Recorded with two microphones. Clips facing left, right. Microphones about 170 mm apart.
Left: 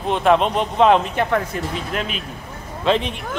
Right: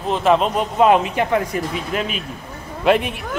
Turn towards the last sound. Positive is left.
turn(degrees=-10)  # may be behind; listen again after turning